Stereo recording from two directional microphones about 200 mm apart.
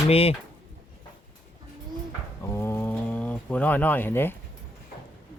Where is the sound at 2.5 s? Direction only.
10° left (ahead or behind).